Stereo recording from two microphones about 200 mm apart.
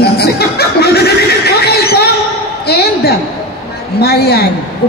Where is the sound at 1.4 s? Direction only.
55° left (ahead or behind).